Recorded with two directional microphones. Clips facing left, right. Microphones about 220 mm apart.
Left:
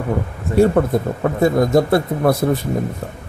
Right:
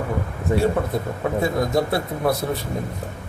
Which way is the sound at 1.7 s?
50° left (ahead or behind).